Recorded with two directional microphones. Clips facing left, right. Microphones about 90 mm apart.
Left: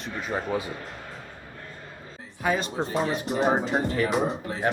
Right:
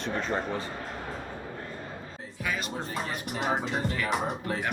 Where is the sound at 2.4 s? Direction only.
30° left (ahead or behind).